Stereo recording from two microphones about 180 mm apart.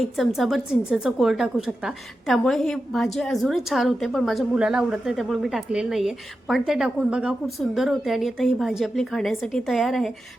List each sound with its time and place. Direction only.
0.0 s a woman's voice: centre (ahead or behind)